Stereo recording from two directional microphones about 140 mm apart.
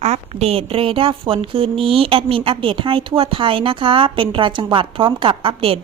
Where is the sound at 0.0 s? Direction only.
50° right (ahead or behind).